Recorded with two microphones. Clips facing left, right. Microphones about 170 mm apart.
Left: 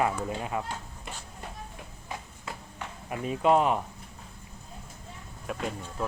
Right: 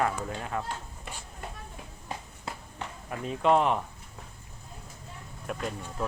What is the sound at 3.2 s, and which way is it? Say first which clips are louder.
Speech: left 1 dB; 5° left (ahead or behind).